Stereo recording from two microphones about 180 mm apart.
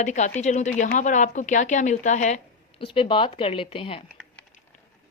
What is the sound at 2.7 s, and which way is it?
A woman's voice, 30° left (ahead or behind).